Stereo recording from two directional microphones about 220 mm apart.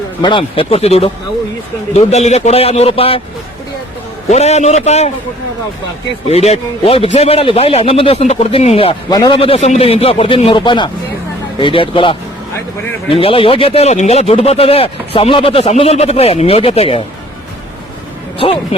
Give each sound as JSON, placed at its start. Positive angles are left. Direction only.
{"t": 0.2, "sound": "a man's voice", "side_deg": 20}
{"t": 4.3, "sound": "a man's voice", "side_deg": 30}
{"t": 6.2, "sound": "a man's voice", "side_deg": 30}
{"t": 18.3, "sound": "a man's voice", "side_deg": 25}